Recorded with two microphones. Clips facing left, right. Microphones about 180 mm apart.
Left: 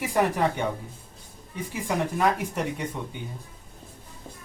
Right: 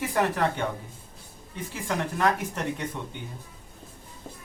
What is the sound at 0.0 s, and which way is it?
Speech, 15° left (ahead or behind).